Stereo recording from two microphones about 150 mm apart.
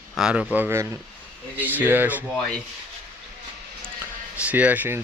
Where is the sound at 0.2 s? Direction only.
5° right (ahead or behind).